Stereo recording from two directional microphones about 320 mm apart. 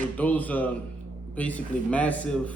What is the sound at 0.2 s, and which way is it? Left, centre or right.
Speech, centre.